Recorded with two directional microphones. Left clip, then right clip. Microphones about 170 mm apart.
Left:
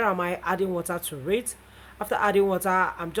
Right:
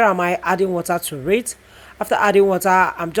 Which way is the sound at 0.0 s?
35° right (ahead or behind).